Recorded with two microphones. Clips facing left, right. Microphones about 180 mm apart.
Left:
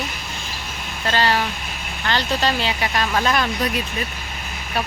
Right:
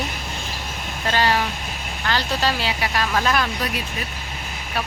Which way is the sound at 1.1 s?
10° right (ahead or behind).